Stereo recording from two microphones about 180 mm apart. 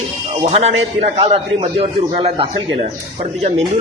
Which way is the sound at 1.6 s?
30° right (ahead or behind).